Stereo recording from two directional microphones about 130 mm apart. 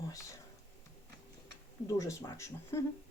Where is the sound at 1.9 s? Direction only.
25° left (ahead or behind).